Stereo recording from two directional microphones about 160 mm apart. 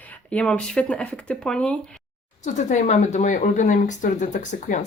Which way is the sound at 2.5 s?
45° left (ahead or behind).